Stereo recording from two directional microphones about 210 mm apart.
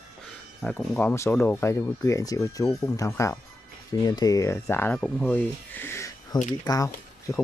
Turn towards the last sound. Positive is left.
turn(degrees=15)  # may be behind; listen again after turning